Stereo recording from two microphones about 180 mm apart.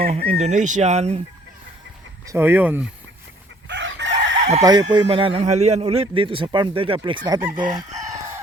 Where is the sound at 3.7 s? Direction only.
80° right.